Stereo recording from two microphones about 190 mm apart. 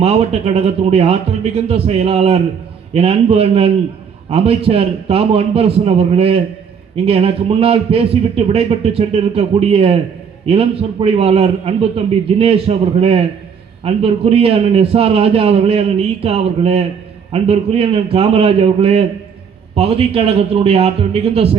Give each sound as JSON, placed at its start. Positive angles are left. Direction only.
{"t": 0.0, "sound": "a man's voice", "side_deg": -30}